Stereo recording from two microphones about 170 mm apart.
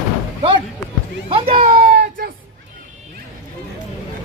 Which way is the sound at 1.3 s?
35° right (ahead or behind).